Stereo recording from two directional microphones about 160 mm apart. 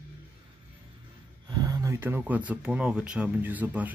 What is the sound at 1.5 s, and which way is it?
Speech, 25° right (ahead or behind).